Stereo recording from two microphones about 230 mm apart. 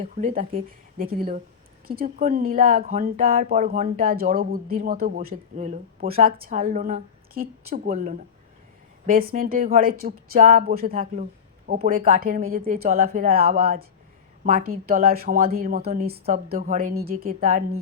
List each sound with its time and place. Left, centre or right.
0.0 s speech: right